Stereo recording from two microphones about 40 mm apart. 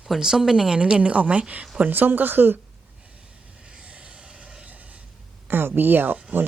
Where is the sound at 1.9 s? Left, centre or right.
Right.